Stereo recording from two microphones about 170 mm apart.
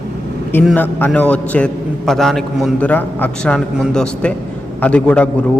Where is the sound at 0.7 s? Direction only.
10° left (ahead or behind).